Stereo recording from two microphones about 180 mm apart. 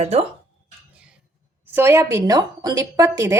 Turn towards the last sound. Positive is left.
turn(degrees=-15)  # may be behind; listen again after turning